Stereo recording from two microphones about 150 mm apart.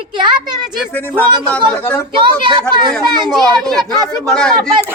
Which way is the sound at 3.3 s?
Centre (ahead or behind).